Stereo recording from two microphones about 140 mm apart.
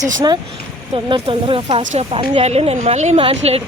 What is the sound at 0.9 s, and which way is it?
Speech, 35° right (ahead or behind).